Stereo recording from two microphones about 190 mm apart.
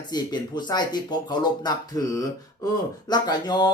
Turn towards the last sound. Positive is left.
turn(degrees=20)  # may be behind; listen again after turning